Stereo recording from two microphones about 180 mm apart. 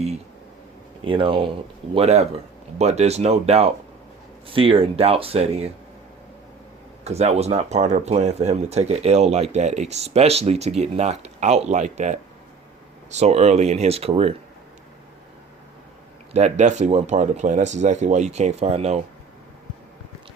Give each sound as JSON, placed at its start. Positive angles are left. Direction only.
{"t": 1.0, "sound": "speech", "side_deg": -30}
{"t": 7.0, "sound": "speech", "side_deg": -35}
{"t": 16.3, "sound": "speech", "side_deg": -40}